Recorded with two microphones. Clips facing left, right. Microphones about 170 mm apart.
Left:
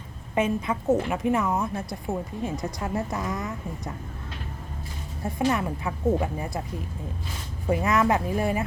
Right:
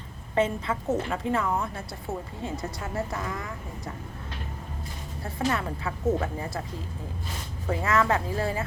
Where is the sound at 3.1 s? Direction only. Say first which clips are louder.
Left 3 dB; 20° left (ahead or behind).